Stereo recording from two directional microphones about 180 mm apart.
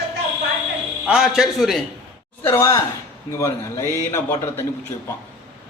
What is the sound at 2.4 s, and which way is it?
A man's voice, 15° left (ahead or behind).